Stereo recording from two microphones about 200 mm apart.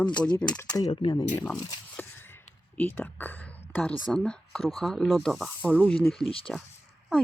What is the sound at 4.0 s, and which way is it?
Speech, centre (ahead or behind).